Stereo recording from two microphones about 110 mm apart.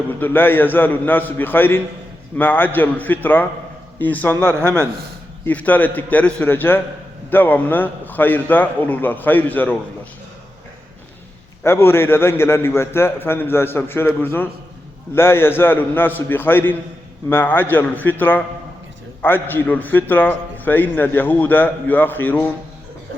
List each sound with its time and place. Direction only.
0.1 s a man's voice: 20° left (ahead or behind)
11.6 s a man's voice: 20° left (ahead or behind)